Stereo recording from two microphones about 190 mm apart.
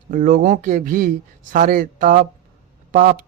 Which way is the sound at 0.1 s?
45° right (ahead or behind).